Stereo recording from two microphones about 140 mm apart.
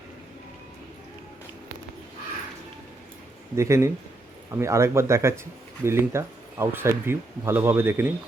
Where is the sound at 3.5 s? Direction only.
20° right (ahead or behind).